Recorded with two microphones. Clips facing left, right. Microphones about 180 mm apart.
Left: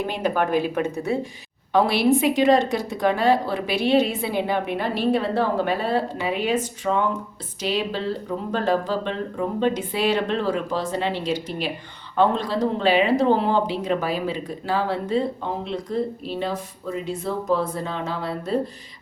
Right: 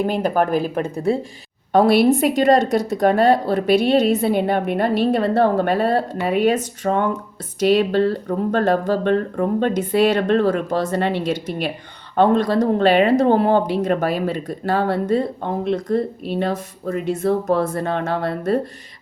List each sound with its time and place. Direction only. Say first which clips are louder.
0.0 s speech: right 4 dB; 45° right (ahead or behind)